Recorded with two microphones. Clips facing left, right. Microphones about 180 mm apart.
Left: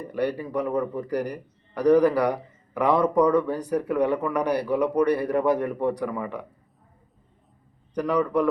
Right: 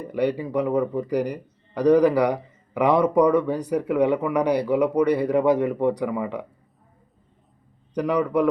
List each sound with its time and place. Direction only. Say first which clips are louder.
0.1 s a man's voice: right 3 dB; 15° right (ahead or behind)
7.9 s a man's voice: right 1 dB; 15° right (ahead or behind)